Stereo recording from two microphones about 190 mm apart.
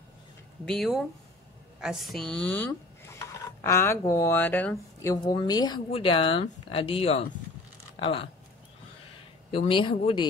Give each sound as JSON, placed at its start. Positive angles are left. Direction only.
{"t": 0.7, "sound": "speech", "side_deg": 0}
{"t": 9.5, "sound": "speech", "side_deg": 25}